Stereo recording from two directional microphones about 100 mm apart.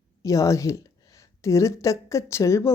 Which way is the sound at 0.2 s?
35° left (ahead or behind).